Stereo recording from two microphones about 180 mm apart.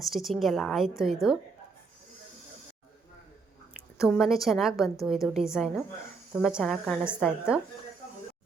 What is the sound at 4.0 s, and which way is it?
Speech, centre (ahead or behind).